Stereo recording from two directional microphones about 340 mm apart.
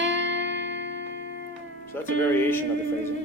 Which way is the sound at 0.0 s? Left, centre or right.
Right.